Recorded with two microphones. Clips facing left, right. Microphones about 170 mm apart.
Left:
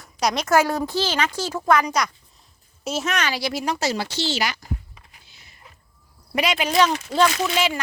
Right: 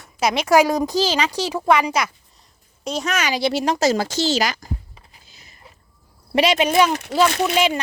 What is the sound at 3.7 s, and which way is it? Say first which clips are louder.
Speech: right 6 dB; 45° right (ahead or behind).